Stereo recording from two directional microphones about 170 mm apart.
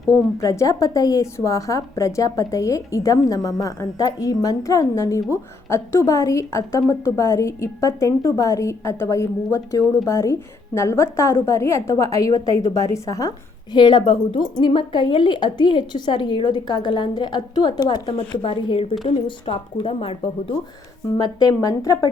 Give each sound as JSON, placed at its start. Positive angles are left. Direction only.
{"t": 0.3, "sound": "a woman's voice", "side_deg": 15}
{"t": 21.1, "sound": "a woman's voice", "side_deg": 20}